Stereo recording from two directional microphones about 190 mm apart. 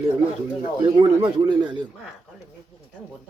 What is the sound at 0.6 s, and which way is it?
Speech, 25° right (ahead or behind).